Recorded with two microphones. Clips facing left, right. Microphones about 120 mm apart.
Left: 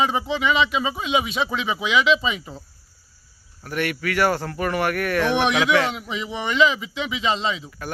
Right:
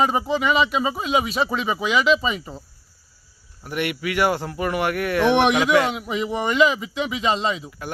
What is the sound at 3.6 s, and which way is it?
Speech, 15° right (ahead or behind).